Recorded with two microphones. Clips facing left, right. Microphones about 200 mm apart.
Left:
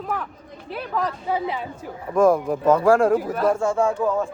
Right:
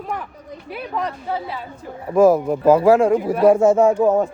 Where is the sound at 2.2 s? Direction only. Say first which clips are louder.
Right 4 dB; 5° right (ahead or behind).